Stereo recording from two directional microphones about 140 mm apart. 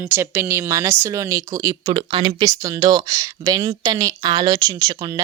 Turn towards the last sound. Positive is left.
turn(degrees=-25)  # may be behind; listen again after turning